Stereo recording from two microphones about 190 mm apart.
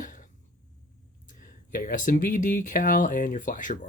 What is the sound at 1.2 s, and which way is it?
Speech, 45° left (ahead or behind).